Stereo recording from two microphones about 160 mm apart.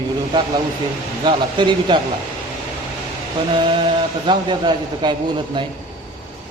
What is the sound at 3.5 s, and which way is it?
A man's voice, 30° right (ahead or behind).